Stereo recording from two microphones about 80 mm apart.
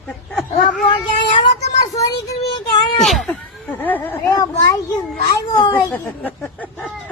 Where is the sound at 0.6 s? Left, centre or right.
Left.